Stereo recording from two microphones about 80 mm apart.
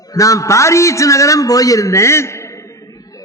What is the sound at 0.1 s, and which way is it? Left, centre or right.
A man's voice, left.